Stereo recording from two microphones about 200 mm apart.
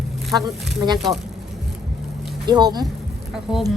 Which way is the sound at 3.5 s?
Centre (ahead or behind).